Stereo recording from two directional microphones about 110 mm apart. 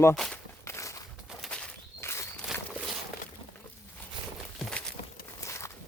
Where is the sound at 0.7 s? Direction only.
25° left (ahead or behind).